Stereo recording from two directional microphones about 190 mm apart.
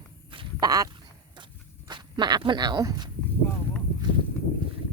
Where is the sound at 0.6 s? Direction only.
20° right (ahead or behind).